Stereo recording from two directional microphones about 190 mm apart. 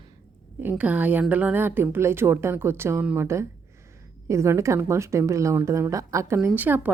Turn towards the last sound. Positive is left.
turn(degrees=-10)  # may be behind; listen again after turning